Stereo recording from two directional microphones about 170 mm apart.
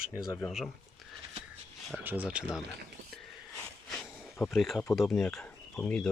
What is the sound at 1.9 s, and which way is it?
Speech, 10° right (ahead or behind).